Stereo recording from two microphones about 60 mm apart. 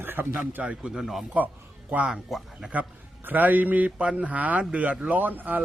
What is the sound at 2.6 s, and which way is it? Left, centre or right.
A man's voice, right.